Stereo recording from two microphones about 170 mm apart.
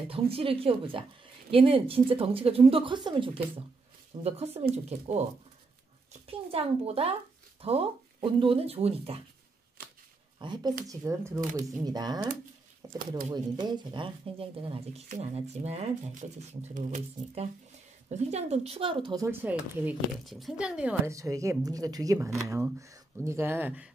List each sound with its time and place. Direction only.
0.1 s speech: 35° right (ahead or behind)
6.2 s speech: 35° right (ahead or behind)
10.4 s speech: 25° right (ahead or behind); by 21.1 s 5° right (ahead or behind)
21.1 s speech: 20° right (ahead or behind)